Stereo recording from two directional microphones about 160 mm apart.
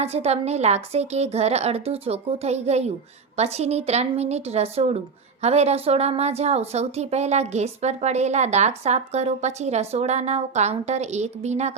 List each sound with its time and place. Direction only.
0.0 s a woman's voice: 40° right (ahead or behind)